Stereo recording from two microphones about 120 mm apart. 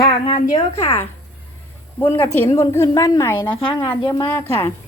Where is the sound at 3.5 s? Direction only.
45° left (ahead or behind).